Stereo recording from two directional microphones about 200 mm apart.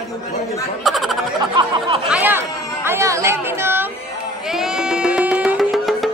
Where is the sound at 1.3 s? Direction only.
25° right (ahead or behind).